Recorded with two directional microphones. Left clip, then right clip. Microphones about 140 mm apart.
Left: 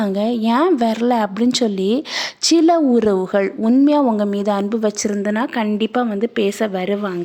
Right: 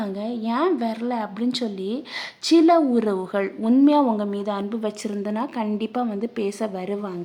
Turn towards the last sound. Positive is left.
turn(degrees=20)  # may be behind; listen again after turning